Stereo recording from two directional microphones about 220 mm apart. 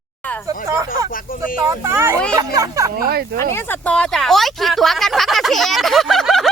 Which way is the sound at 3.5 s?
10° left (ahead or behind).